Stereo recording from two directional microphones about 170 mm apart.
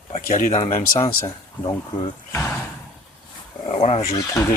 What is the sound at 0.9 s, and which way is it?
Speech, 20° left (ahead or behind).